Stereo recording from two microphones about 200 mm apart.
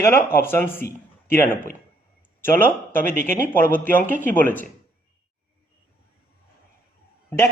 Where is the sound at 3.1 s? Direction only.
40° right (ahead or behind).